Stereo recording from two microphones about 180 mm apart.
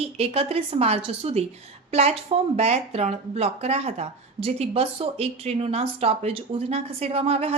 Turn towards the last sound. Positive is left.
turn(degrees=-35)  # may be behind; listen again after turning